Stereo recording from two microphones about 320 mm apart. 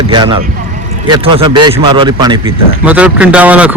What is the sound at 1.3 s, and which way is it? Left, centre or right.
Speech, centre.